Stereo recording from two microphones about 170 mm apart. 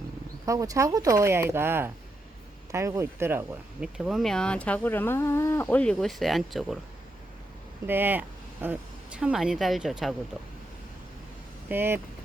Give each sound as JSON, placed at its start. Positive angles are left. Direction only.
{"t": 0.4, "sound": "speech", "side_deg": -20}
{"t": 3.9, "sound": "speech", "side_deg": 0}
{"t": 7.9, "sound": "speech", "side_deg": -10}
{"t": 11.7, "sound": "speech", "side_deg": -15}